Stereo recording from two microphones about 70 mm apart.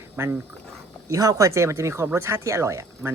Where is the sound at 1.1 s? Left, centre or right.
Right.